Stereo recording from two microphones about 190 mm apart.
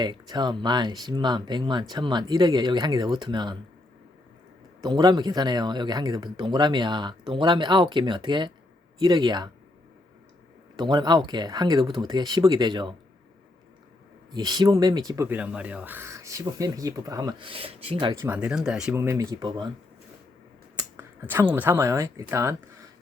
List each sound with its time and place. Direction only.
0.0 s speech: 20° right (ahead or behind)
4.8 s speech: 20° right (ahead or behind)
10.8 s speech: 20° right (ahead or behind)
14.3 s speech: 20° right (ahead or behind)
18.2 s speech: 10° right (ahead or behind); by 19.7 s 25° right (ahead or behind)
20.7 s speech: 15° right (ahead or behind)